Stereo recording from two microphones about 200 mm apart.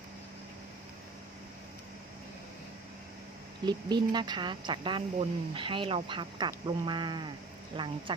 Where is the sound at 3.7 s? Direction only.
20° right (ahead or behind).